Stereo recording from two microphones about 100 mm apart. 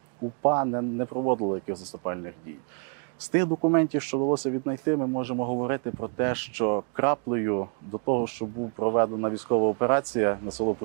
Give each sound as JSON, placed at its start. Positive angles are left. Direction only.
{"t": 0.4, "sound": "speech", "side_deg": -20}
{"t": 3.3, "sound": "speech", "side_deg": -20}